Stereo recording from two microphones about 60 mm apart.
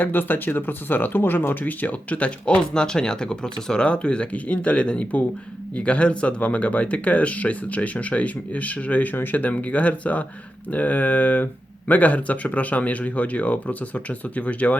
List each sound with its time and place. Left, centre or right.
0.0 s speech: left